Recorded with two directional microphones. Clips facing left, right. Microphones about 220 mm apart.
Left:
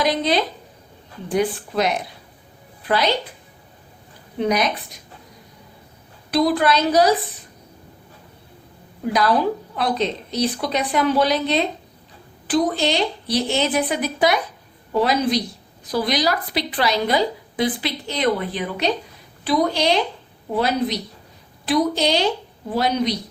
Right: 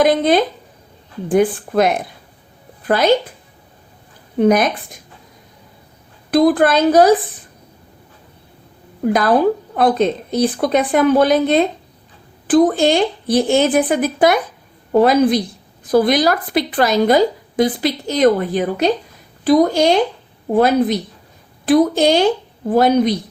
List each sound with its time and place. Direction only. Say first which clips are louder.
0.0 s a woman's voice: right 7 dB; 50° right (ahead or behind)
4.4 s a woman's voice: right 7 dB; 50° right (ahead or behind)
6.3 s a woman's voice: right 6 dB; 50° right (ahead or behind)
9.1 s a woman's voice: right 4 dB; 50° right (ahead or behind)